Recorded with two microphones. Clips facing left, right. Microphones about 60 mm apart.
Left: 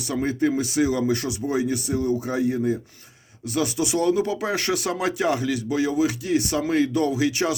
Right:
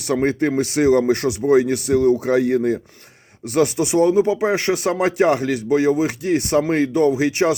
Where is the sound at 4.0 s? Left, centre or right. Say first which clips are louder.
Right 7 dB; right.